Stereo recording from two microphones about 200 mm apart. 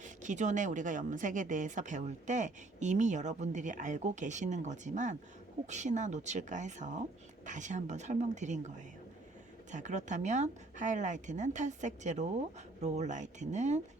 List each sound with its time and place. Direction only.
0.0 s speech: 40° right (ahead or behind)
9.7 s speech: 35° right (ahead or behind)